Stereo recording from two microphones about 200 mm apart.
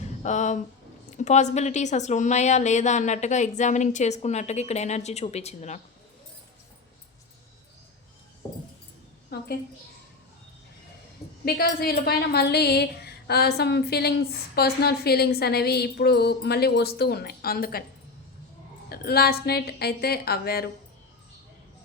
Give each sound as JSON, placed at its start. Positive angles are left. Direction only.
{"t": 0.2, "sound": "a sound", "side_deg": 35}
{"t": 1.1, "sound": "a woman's voice", "side_deg": 35}
{"t": 11.4, "sound": "a woman's voice", "side_deg": 50}
{"t": 18.9, "sound": "a woman's voice", "side_deg": 50}